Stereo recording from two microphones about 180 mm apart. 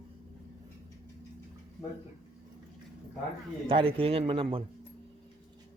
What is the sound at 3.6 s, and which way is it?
Speech, 30° right (ahead or behind).